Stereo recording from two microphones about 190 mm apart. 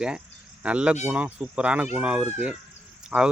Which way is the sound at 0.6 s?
5° right (ahead or behind).